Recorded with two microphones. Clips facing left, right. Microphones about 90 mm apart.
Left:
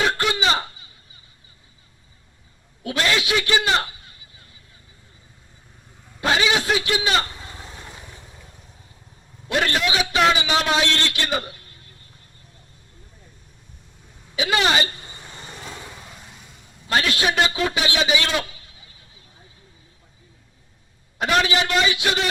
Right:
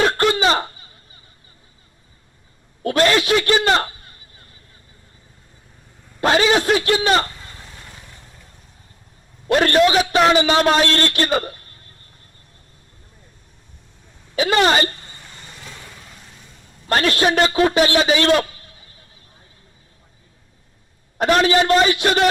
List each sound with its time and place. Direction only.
0.2 s a sound: 45° right (ahead or behind)
2.8 s a man's voice: 45° right (ahead or behind)
6.1 s a sound: 45° right (ahead or behind)
6.7 s a man's voice: 45° right (ahead or behind)
7.3 s vehicle: 15° left (ahead or behind)
9.5 s a man's voice: 50° right (ahead or behind)
14.3 s a man's voice: 45° right (ahead or behind)
15.0 s vehicle: 15° left (ahead or behind)
16.9 s a man's voice: 45° right (ahead or behind)
21.2 s a man's voice: 40° right (ahead or behind)